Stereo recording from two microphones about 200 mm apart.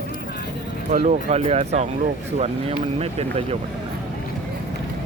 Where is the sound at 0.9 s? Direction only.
30° right (ahead or behind).